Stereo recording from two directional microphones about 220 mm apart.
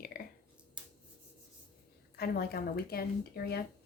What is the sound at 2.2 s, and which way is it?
A woman's voice, 45° left (ahead or behind).